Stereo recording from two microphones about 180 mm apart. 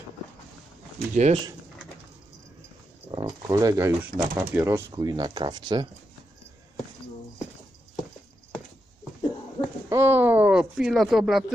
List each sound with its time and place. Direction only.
1.1 s speech: 40° right (ahead or behind)
3.1 s speech: 25° right (ahead or behind)
9.8 s speech: 15° right (ahead or behind)